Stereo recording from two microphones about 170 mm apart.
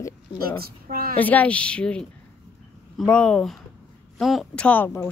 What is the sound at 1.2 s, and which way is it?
Speech, 10° left (ahead or behind).